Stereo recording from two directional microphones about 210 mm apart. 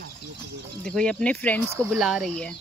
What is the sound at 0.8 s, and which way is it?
Speech, 5° left (ahead or behind).